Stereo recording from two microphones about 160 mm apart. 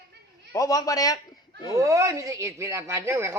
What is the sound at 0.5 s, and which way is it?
Speech, 20° left (ahead or behind).